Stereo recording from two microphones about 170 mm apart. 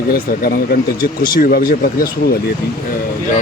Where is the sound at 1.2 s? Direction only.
60° left (ahead or behind).